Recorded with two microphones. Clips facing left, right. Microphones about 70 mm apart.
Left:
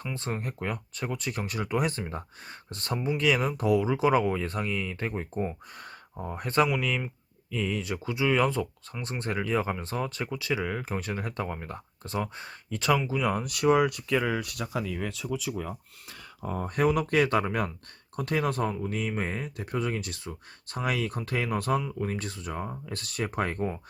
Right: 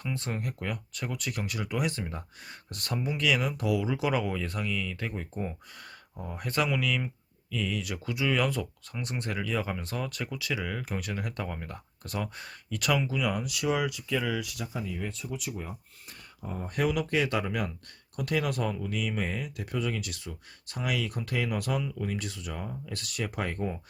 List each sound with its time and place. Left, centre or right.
0.0 s speech: left
14.7 s speech: left
16.6 s speech: left
18.2 s speech: left